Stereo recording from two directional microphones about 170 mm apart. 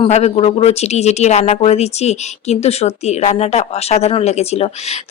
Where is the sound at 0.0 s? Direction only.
40° left (ahead or behind).